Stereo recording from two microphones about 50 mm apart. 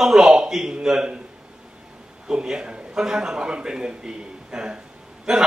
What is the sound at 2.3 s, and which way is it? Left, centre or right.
A man's voice, centre.